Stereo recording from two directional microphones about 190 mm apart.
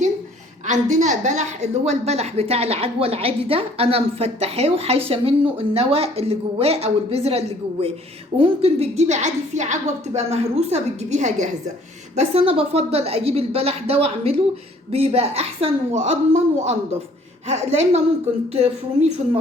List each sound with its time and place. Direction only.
0.7 s a woman's voice: 40° right (ahead or behind)